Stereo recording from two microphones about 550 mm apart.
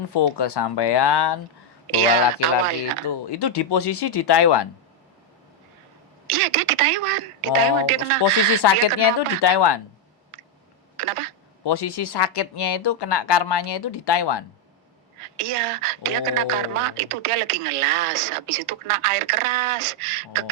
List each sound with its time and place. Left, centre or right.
0.1 s speech: left
3.1 s speech: left
6.2 s a woman's voice: right
8.2 s speech: left
10.9 s a sound: right
11.6 s speech: left
15.2 s a woman's voice: right